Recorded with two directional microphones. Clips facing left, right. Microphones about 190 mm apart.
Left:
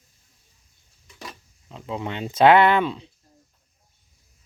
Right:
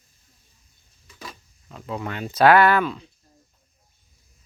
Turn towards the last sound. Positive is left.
turn(degrees=25)  # may be behind; listen again after turning